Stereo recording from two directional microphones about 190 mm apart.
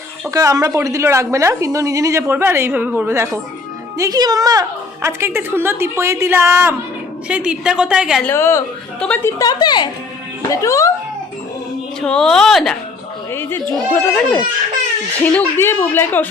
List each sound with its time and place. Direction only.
0.3 s a woman's voice: 20° right (ahead or behind)
8.2 s a woman's voice: 15° left (ahead or behind)
9.4 s a woman's voice: 20° left (ahead or behind)
12.0 s a woman's voice: 5° left (ahead or behind)